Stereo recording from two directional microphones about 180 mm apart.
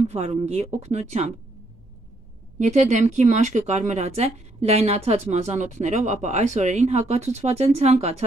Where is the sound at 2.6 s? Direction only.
40° right (ahead or behind).